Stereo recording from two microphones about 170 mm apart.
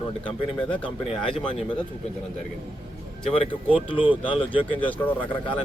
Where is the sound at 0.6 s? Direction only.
30° left (ahead or behind).